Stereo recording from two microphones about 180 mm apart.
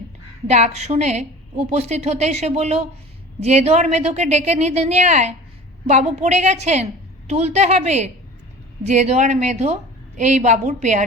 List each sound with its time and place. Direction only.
0.4 s a woman's voice: 40° right (ahead or behind)